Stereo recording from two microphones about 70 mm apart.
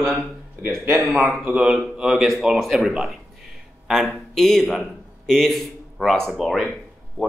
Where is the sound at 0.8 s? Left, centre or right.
Right.